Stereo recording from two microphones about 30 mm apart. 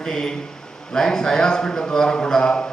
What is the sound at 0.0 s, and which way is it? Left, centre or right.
A man's voice, left.